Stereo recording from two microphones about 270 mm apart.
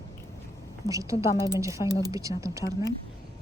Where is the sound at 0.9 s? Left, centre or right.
Centre.